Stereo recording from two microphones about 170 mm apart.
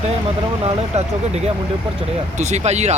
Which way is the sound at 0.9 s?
40° right (ahead or behind).